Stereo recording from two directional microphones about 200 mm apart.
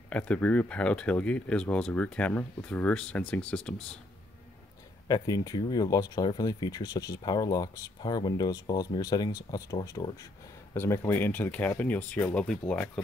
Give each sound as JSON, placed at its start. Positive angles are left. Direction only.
{"t": 0.1, "sound": "speech", "side_deg": 5}
{"t": 5.0, "sound": "speech", "side_deg": 20}